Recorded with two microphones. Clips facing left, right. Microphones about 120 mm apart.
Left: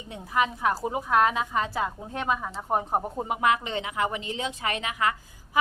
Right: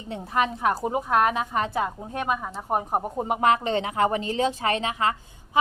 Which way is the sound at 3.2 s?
35° right (ahead or behind).